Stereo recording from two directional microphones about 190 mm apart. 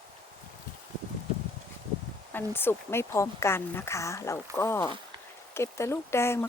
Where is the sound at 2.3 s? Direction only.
10° left (ahead or behind).